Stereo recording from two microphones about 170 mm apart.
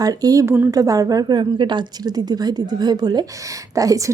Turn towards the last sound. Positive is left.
turn(degrees=-20)  # may be behind; listen again after turning